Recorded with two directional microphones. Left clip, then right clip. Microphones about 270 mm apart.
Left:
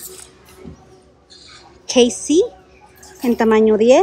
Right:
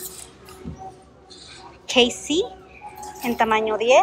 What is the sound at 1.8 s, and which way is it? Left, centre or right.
A woman's voice, centre.